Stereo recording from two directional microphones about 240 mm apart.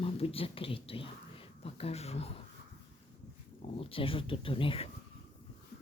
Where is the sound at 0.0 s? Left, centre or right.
Left.